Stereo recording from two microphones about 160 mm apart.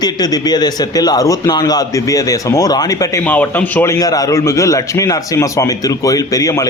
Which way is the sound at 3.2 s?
10° left (ahead or behind).